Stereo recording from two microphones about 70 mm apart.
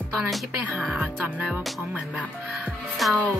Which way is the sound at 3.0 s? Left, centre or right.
Centre.